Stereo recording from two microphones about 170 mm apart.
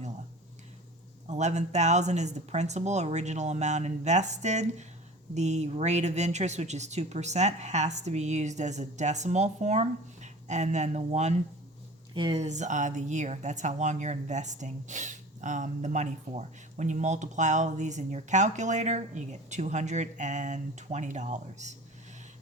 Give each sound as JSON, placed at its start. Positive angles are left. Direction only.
{"t": 1.3, "sound": "speech", "side_deg": -40}
{"t": 12.1, "sound": "speech", "side_deg": -30}
{"t": 12.4, "sound": "speech", "side_deg": -45}